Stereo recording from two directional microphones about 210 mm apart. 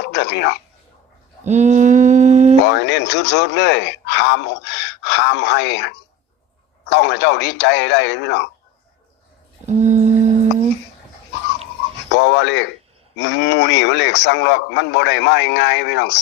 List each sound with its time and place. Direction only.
0.0 s speech: 55° left (ahead or behind)
1.5 s a sound: 35° right (ahead or behind)
2.6 s a man's voice: 55° left (ahead or behind)
9.6 s humming: 35° right (ahead or behind)
12.1 s a man's voice: 55° left (ahead or behind)